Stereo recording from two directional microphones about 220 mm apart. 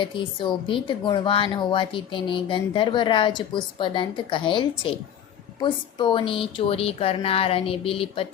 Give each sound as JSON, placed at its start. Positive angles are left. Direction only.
{"t": 0.0, "sound": "a woman's voice", "side_deg": 20}